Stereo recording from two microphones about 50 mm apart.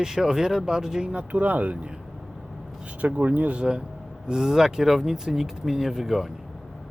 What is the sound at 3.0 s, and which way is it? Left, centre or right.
Speech, right.